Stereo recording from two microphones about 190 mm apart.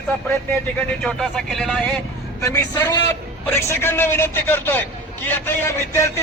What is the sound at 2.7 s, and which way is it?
A man's voice, 20° left (ahead or behind).